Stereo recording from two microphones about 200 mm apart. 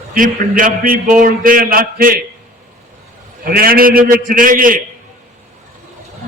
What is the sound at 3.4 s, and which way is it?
A man's voice, 50° right (ahead or behind).